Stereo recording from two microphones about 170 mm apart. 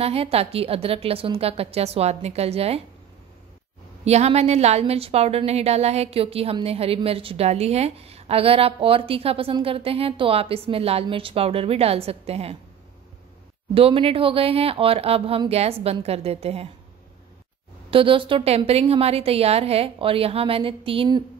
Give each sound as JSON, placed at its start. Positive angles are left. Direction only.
{"t": 0.0, "sound": "a woman's voice", "side_deg": -35}
{"t": 4.0, "sound": "a woman's voice", "side_deg": -40}
{"t": 13.7, "sound": "a woman's voice", "side_deg": -35}
{"t": 17.8, "sound": "a woman's voice", "side_deg": -30}